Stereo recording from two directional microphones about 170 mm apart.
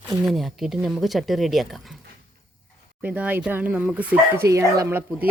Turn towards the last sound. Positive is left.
turn(degrees=-15)  # may be behind; listen again after turning